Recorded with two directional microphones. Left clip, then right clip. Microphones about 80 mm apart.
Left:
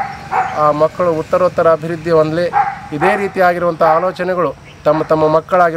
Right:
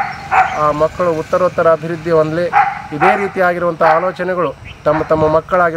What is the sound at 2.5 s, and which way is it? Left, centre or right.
Bow-wow, right.